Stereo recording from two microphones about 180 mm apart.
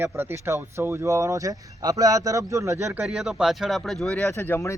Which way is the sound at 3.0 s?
Centre (ahead or behind).